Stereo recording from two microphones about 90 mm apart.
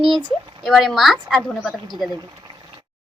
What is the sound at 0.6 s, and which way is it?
A woman's voice, centre (ahead or behind).